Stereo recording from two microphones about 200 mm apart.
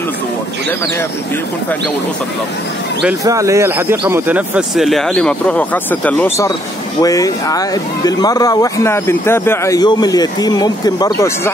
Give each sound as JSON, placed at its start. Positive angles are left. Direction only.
{"t": 3.3, "sound": "speech", "side_deg": -15}